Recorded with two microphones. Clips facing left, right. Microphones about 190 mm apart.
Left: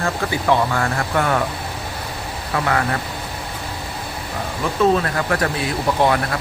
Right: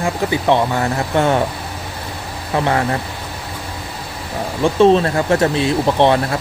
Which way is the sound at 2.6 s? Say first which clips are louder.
Right 3 dB; 25° right (ahead or behind).